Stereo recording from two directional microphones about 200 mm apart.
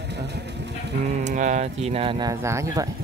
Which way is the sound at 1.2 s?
35° right (ahead or behind).